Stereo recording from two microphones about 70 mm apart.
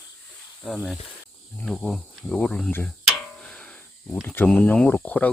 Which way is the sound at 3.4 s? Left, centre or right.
Centre.